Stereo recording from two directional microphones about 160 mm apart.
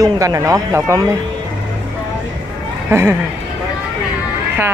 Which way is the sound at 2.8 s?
15° right (ahead or behind).